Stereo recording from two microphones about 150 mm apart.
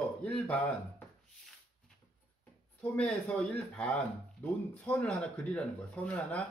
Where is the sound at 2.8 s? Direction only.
10° left (ahead or behind).